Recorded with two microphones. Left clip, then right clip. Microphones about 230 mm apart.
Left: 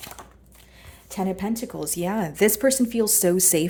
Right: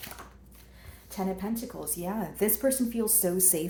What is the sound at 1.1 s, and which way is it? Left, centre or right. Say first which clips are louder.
Speech: left 6 dB; left.